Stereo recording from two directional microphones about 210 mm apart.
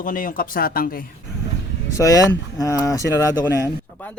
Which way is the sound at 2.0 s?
15° left (ahead or behind).